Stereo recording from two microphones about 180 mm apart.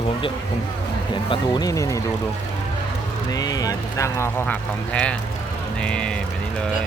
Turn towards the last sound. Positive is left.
turn(degrees=5)  # may be behind; listen again after turning